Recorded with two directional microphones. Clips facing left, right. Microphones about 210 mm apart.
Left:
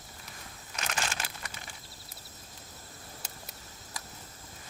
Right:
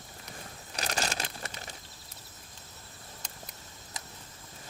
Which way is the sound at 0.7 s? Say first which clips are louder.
Right 3 dB; 35° right (ahead or behind).